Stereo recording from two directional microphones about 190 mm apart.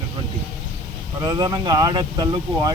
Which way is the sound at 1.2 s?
25° right (ahead or behind).